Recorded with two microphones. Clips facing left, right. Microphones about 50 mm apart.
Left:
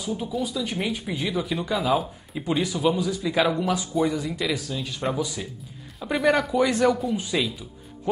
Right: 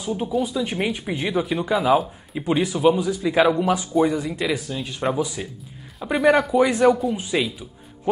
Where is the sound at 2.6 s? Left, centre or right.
Right.